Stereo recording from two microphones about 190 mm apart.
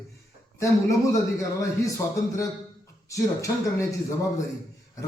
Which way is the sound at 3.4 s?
15° left (ahead or behind).